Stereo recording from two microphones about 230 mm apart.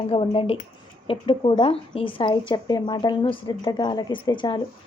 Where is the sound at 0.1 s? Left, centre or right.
Left.